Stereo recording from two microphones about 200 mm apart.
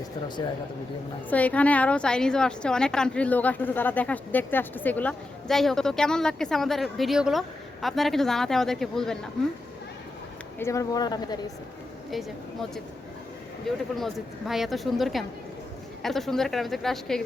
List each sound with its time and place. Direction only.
1.3 s a woman's voice: 5° left (ahead or behind)
10.6 s speech: 15° left (ahead or behind)
13.9 s a woman's voice: centre (ahead or behind)